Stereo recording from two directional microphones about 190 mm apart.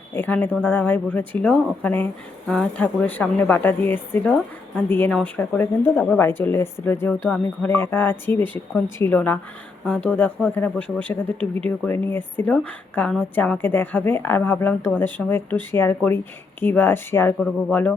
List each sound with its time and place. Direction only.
0.1 s speech: 10° left (ahead or behind)